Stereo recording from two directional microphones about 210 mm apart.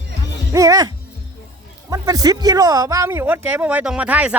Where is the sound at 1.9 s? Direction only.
15° right (ahead or behind).